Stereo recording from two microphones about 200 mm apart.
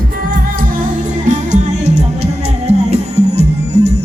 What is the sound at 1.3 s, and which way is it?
Music, 35° right (ahead or behind).